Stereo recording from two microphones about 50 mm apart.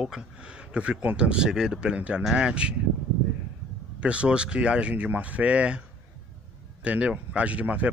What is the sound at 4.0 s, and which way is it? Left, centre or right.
Speech, right.